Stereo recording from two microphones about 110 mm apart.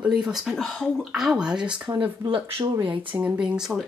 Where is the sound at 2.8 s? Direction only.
50° right (ahead or behind).